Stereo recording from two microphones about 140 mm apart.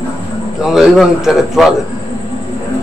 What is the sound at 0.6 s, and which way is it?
A man's voice, 5° right (ahead or behind).